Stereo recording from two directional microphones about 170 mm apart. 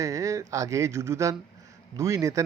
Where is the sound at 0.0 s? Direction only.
20° right (ahead or behind).